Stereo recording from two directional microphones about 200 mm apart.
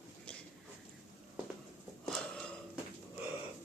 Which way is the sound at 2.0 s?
Centre (ahead or behind).